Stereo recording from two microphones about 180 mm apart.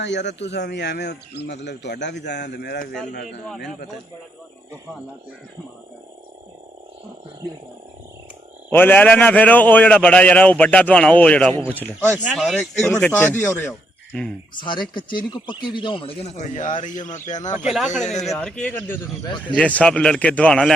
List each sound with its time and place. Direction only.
0.0 s a man's voice: 75° left (ahead or behind); by 2.9 s 60° left (ahead or behind)
3.5 s speech: centre (ahead or behind)
8.7 s a man's voice: 10° left (ahead or behind)
14.5 s speech: 25° left (ahead or behind); by 17.5 s 40° left (ahead or behind)
17.7 s a man's voice: centre (ahead or behind)